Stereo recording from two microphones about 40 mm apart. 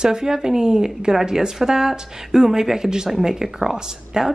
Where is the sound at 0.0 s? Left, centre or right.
Centre.